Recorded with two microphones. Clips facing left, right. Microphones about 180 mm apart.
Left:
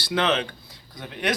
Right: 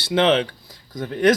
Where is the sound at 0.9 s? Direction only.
45° right (ahead or behind).